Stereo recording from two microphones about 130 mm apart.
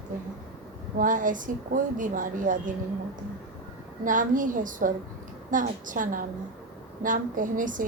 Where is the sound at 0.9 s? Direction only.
90° right.